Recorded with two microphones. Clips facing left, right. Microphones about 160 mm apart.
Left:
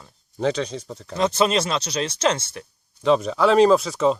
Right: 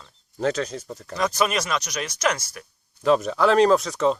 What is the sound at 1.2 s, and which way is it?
Speech, 25° left (ahead or behind).